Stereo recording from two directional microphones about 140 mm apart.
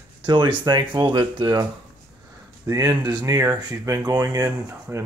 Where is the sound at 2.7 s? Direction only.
25° right (ahead or behind).